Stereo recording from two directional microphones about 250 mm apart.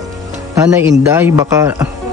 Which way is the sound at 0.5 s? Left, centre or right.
Centre.